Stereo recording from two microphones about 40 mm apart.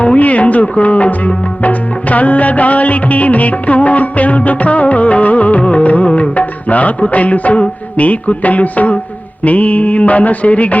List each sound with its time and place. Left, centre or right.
0.0 s music: left
6.1 s music of bollywood: left
6.3 s music: left